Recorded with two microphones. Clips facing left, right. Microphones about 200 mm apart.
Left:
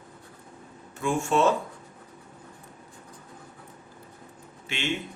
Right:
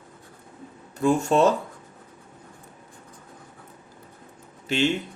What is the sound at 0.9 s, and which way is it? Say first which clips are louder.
Speech: right 5 dB; 40° right (ahead or behind).